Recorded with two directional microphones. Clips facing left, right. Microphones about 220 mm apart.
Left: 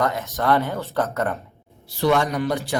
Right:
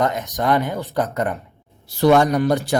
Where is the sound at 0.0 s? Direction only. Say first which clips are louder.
Right 2 dB; 15° right (ahead or behind).